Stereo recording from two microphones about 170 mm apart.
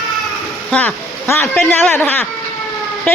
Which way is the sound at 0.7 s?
10° left (ahead or behind).